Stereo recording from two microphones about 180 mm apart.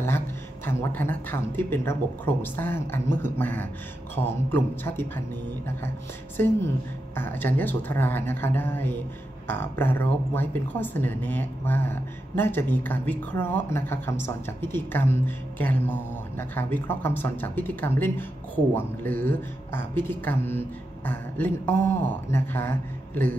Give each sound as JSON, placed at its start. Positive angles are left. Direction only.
{"t": 0.7, "sound": "speech", "side_deg": 10}
{"t": 6.3, "sound": "speech", "side_deg": 10}